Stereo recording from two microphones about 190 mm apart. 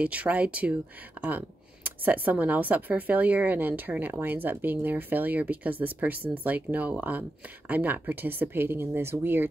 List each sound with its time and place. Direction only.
0.0 s a woman's voice: 5° right (ahead or behind)